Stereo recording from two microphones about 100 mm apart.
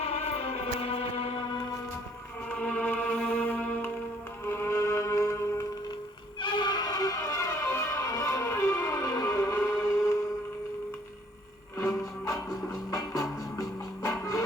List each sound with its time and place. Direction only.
0.0 s music: 90° left
1.4 s music: 45° left (ahead or behind)
2.5 s music: 10° left (ahead or behind); by 5.6 s 30° left (ahead or behind)
6.4 s music: 50° left (ahead or behind); by 10.2 s 30° left (ahead or behind)
11.8 s music: 30° left (ahead or behind)